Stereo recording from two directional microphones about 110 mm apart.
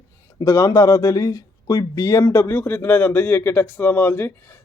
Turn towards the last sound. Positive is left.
turn(degrees=20)  # may be behind; listen again after turning